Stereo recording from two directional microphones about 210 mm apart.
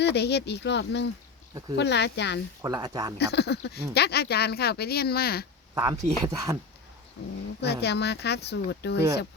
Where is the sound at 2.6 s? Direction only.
20° right (ahead or behind).